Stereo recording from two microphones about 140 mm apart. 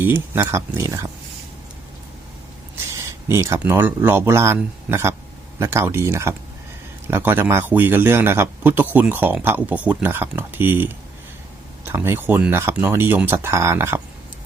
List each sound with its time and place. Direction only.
0.0 s speech: 15° right (ahead or behind)
3.2 s a man's voice: 20° right (ahead or behind)